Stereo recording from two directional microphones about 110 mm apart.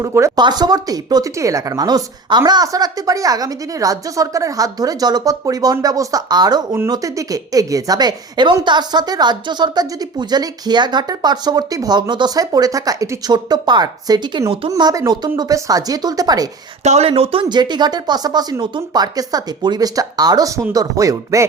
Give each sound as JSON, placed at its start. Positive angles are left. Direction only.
{"t": 0.0, "sound": "speech", "side_deg": -25}
{"t": 0.3, "sound": "a woman's voice", "side_deg": -40}
{"t": 16.8, "sound": "speech", "side_deg": -80}
{"t": 17.5, "sound": "a woman's voice", "side_deg": -40}